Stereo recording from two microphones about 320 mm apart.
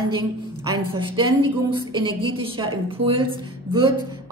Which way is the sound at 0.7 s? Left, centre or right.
Centre.